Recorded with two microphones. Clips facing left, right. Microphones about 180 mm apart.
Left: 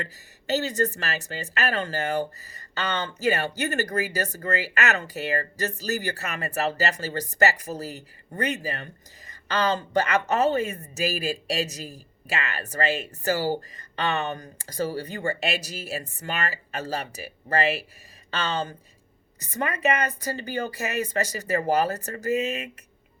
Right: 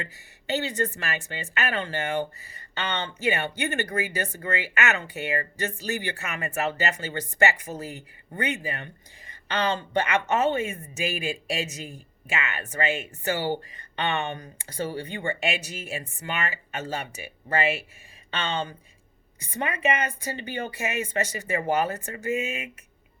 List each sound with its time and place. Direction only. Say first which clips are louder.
0.0 s speech: left 2 dB; 40° left (ahead or behind)